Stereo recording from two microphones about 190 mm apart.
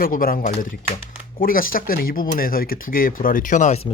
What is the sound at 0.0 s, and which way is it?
Speech, 50° left (ahead or behind).